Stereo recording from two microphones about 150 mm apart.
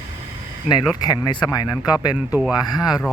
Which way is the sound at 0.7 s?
25° left (ahead or behind).